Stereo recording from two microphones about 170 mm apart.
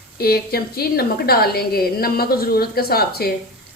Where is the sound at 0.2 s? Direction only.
65° left (ahead or behind).